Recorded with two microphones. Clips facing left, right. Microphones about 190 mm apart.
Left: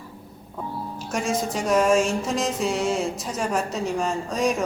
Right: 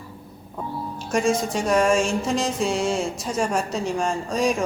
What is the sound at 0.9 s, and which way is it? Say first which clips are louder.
Speech: right 5 dB; centre (ahead or behind).